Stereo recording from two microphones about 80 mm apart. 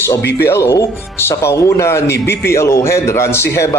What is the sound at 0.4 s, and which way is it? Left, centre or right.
A man's voice, left.